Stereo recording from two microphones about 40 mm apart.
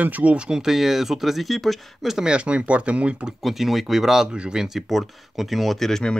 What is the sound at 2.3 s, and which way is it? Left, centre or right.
Speech, right.